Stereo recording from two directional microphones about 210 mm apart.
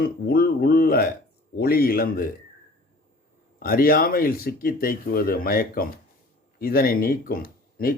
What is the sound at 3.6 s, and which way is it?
Speech, 45° left (ahead or behind).